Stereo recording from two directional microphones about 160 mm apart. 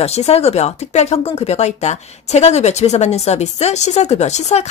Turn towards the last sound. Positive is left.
turn(degrees=45)  # may be behind; listen again after turning